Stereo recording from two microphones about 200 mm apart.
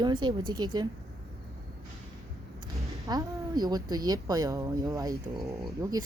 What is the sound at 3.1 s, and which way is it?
A woman's voice, 20° right (ahead or behind).